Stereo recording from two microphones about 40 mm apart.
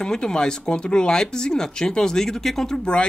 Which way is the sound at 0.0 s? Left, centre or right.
Centre.